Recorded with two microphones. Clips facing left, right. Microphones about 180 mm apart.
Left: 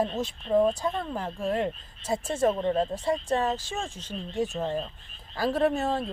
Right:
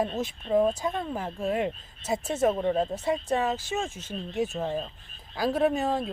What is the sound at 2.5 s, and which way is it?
Speech, 10° right (ahead or behind).